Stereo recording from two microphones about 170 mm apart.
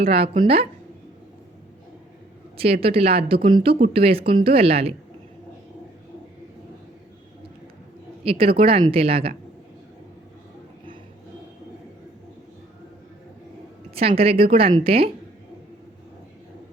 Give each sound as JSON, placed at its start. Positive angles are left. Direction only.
{"t": 0.0, "sound": "a woman's voice", "side_deg": -35}
{"t": 2.8, "sound": "a woman's voice", "side_deg": -35}
{"t": 8.2, "sound": "a woman's voice", "side_deg": -35}
{"t": 13.9, "sound": "a woman's voice", "side_deg": -35}